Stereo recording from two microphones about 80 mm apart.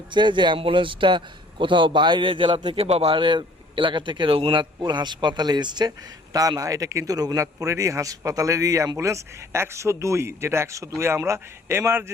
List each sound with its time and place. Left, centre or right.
0.1 s a man's voice: right
6.6 s speech: right